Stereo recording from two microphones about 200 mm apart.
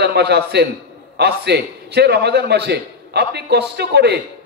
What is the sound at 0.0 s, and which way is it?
A man's voice, 55° right (ahead or behind).